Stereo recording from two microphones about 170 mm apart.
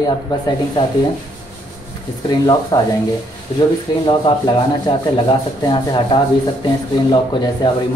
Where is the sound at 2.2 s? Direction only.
25° left (ahead or behind).